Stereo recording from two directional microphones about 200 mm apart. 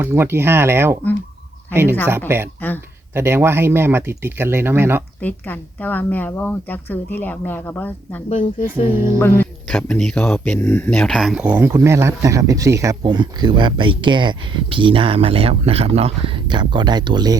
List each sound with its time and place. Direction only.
0.0 s speech: 10° right (ahead or behind)
2.6 s speech: 10° left (ahead or behind)
3.2 s speech: 10° right (ahead or behind)
5.2 s a woman's voice: 10° left (ahead or behind)
8.7 s speech: 10° right (ahead or behind)
9.4 s speech: 5° left (ahead or behind); by 17.3 s 20° right (ahead or behind)